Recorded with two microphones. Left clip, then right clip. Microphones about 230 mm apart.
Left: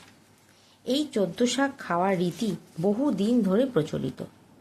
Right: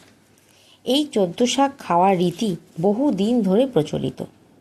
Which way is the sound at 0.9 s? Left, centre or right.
Centre.